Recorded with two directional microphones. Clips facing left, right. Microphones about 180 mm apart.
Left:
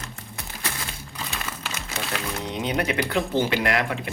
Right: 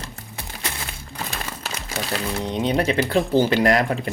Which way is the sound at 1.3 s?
35° right (ahead or behind).